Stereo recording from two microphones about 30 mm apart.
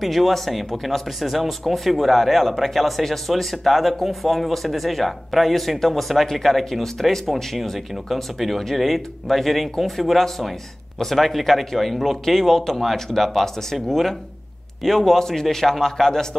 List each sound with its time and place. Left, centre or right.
0.0 s a man's voice: centre
7.9 s a man's voice: centre
15.1 s a man's voice: centre